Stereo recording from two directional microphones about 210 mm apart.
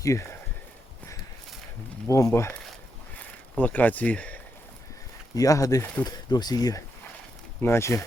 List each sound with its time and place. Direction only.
0.0 s speech: 15° left (ahead or behind)
2.0 s speech: 15° left (ahead or behind)
3.6 s speech: 10° left (ahead or behind)